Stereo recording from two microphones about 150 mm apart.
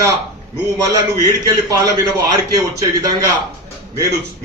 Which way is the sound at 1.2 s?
25° right (ahead or behind).